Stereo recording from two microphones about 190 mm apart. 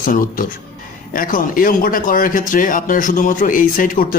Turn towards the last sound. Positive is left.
turn(degrees=45)  # may be behind; listen again after turning